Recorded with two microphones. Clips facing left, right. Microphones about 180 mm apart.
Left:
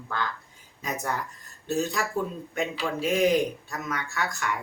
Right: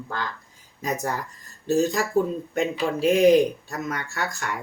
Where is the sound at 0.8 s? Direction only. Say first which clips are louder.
Right 3 dB; 35° right (ahead or behind).